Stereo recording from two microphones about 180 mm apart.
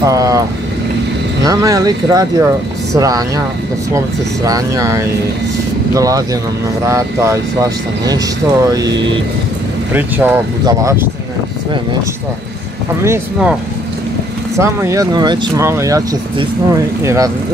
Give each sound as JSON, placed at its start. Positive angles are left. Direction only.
{"t": 0.0, "sound": "speech", "side_deg": -20}
{"t": 1.4, "sound": "speech", "side_deg": -20}
{"t": 4.5, "sound": "speech", "side_deg": -20}
{"t": 9.9, "sound": "speech", "side_deg": -10}
{"t": 13.0, "sound": "speech", "side_deg": -10}
{"t": 14.6, "sound": "speech", "side_deg": -15}